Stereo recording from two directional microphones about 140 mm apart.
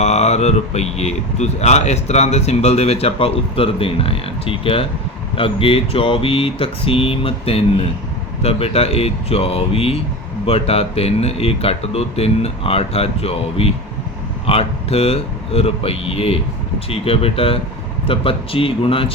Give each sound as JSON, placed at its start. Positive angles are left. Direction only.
{"t": 0.0, "sound": "speech", "side_deg": 50}
{"t": 5.4, "sound": "mantra", "side_deg": 40}
{"t": 8.4, "sound": "speech", "side_deg": 45}
{"t": 18.1, "sound": "mantra", "side_deg": 40}